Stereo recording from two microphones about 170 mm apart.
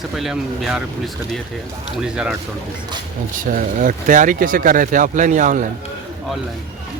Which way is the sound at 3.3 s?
50° right (ahead or behind).